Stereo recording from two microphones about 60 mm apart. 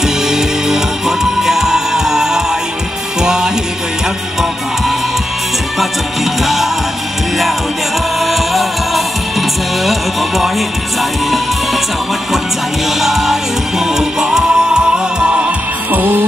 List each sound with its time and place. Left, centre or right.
0.0 s music: centre
6.4 s music: centre
8.2 s music: centre
13.0 s music: centre
15.9 s music: right